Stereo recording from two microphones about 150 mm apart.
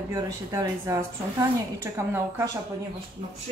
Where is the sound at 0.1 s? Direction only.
20° right (ahead or behind).